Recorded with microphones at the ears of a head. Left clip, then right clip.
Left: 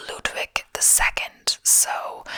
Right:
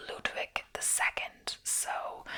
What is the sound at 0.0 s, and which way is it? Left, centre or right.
Whispering, left.